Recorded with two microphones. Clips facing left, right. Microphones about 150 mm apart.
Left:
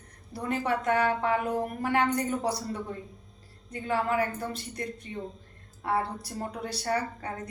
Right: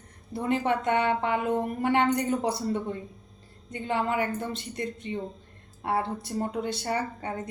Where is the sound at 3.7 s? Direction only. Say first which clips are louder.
Even; 25° right (ahead or behind).